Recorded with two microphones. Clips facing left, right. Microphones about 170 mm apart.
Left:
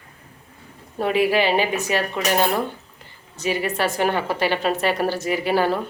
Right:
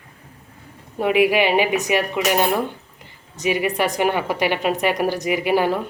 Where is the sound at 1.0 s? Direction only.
15° right (ahead or behind).